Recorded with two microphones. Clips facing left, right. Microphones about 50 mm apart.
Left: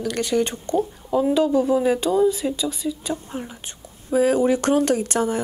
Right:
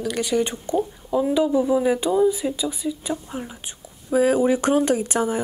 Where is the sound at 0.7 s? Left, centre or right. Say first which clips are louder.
Left 1 dB; centre.